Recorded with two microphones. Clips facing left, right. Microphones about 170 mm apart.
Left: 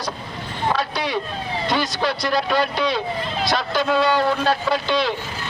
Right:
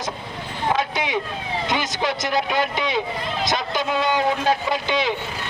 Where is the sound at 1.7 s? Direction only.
20° right (ahead or behind).